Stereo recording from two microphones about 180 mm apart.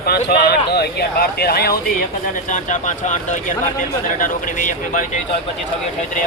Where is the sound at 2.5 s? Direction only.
45° left (ahead or behind).